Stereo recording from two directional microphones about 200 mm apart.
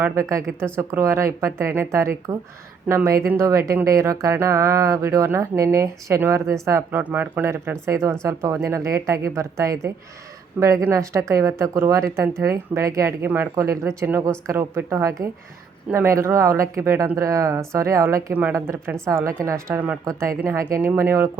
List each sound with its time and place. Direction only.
0.0 s speech: 15° right (ahead or behind)